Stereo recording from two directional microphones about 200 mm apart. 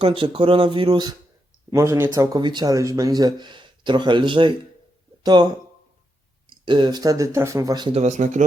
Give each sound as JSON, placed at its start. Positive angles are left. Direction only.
{"t": 0.0, "sound": "speech", "side_deg": -25}
{"t": 6.7, "sound": "speech", "side_deg": -25}